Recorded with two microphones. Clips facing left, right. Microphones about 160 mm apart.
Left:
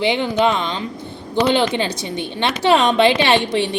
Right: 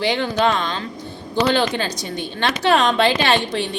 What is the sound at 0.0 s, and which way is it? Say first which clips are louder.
A woman's voice: left 2 dB; 20° left (ahead or behind).